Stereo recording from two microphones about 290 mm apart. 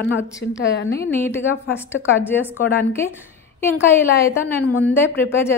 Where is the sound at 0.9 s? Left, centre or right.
Centre.